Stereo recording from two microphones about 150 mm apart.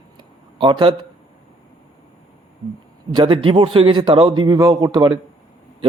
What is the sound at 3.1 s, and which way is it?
A man's voice, 35° right (ahead or behind).